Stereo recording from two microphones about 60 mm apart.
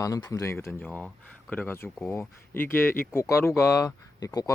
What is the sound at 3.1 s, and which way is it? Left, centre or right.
Speech, left.